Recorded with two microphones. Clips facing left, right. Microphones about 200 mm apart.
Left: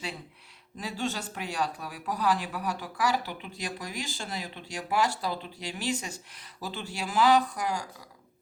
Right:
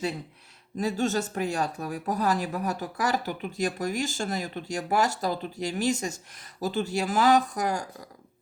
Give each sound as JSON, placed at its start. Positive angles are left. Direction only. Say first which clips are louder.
{"t": 0.8, "sound": "speech", "louder": "right 7 dB", "side_deg": -45}